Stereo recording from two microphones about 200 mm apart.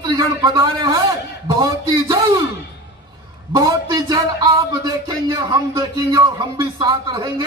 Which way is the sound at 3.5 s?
20° right (ahead or behind).